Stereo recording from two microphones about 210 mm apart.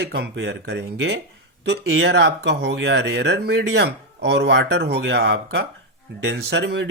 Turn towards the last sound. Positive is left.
turn(degrees=-55)  # may be behind; listen again after turning